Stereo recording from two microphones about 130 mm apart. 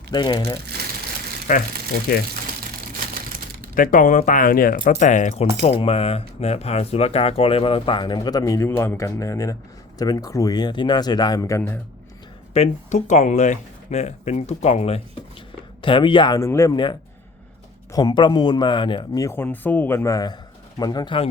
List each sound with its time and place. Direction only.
0.1 s speech: 35° left (ahead or behind)
1.5 s speech: 75° left (ahead or behind)
3.8 s speech: 85° left; by 5.5 s 65° left (ahead or behind)
5.6 s speech: 45° left (ahead or behind); by 11.8 s 20° left (ahead or behind)
12.5 s speech: 55° left (ahead or behind)
15.8 s speech: 40° left (ahead or behind)
16.4 s speech: 25° left (ahead or behind)
16.7 s speech: 35° left (ahead or behind)
19.2 s speech: 20° left (ahead or behind)
20.7 s speech: 35° left (ahead or behind)